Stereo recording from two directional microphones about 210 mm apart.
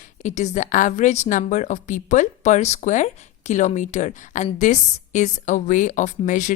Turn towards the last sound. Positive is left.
turn(degrees=35)  # may be behind; listen again after turning